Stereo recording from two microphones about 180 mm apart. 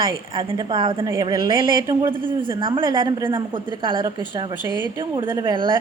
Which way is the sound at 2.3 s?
30° right (ahead or behind).